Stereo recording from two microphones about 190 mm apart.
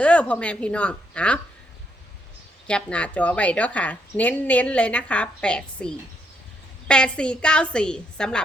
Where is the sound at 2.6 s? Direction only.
5° left (ahead or behind).